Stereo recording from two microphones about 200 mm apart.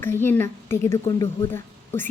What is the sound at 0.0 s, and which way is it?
A woman's voice, 10° left (ahead or behind).